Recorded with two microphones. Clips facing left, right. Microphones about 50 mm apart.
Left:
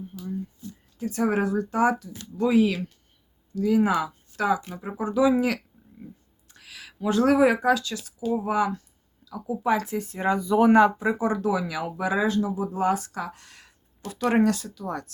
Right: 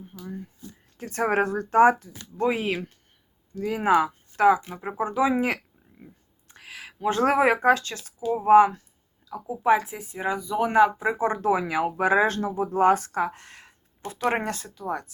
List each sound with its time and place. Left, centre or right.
0.1 s a sound: right
0.9 s speech: right
9.3 s speech: right; by 10.9 s centre
10.9 s speech: right
11.2 s speech: right